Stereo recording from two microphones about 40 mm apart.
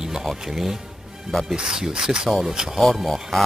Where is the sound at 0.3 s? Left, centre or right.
Centre.